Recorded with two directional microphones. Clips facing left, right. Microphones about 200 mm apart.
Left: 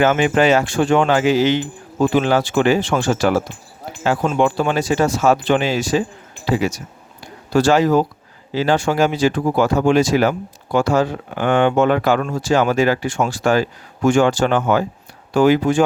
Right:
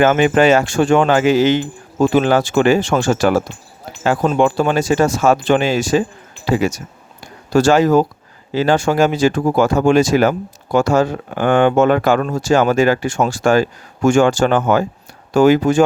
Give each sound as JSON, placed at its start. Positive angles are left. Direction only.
{"t": 0.0, "sound": "speech", "side_deg": -50}